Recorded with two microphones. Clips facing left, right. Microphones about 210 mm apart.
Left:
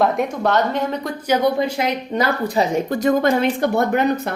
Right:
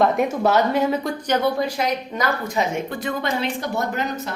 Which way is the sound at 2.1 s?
35° left (ahead or behind).